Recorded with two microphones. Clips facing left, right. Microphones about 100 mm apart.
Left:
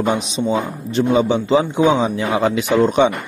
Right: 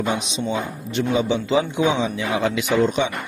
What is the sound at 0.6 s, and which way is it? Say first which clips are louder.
Speech: left 5 dB; 35° left (ahead or behind).